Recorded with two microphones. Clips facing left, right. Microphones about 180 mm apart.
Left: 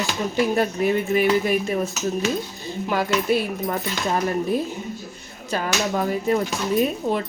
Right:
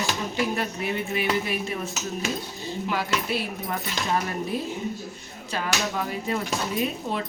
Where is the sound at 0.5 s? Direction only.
45° left (ahead or behind).